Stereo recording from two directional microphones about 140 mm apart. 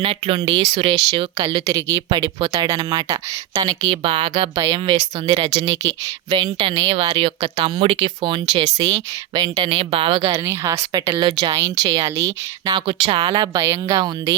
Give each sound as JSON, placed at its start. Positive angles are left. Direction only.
{"t": 0.0, "sound": "speech", "side_deg": -40}
{"t": 1.6, "sound": "speech", "side_deg": -25}
{"t": 4.0, "sound": "speech", "side_deg": -40}
{"t": 10.3, "sound": "speech", "side_deg": -20}
{"t": 11.1, "sound": "speech", "side_deg": -35}
{"t": 12.9, "sound": "speech", "side_deg": -40}
{"t": 13.6, "sound": "speech", "side_deg": -20}